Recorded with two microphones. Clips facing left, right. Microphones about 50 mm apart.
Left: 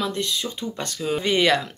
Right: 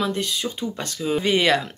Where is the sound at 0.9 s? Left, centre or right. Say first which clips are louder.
Right 2 dB; centre.